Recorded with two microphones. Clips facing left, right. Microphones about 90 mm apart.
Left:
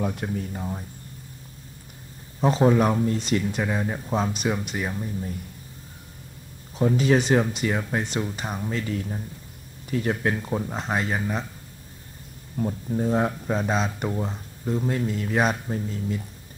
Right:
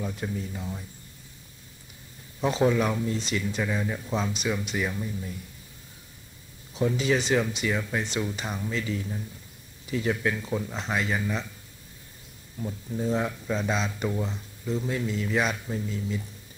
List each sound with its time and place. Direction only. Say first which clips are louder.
0.0 s speech: left 4 dB; 60° left (ahead or behind); by 0.8 s 45° left (ahead or behind)
2.4 s speech: left 4 dB; 40° left (ahead or behind)
6.7 s speech: left 4 dB; 45° left (ahead or behind)
12.5 s speech: left 6 dB; 50° left (ahead or behind)